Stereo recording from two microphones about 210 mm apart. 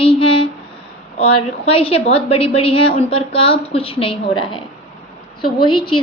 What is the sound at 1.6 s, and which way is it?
A woman's voice, 25° left (ahead or behind).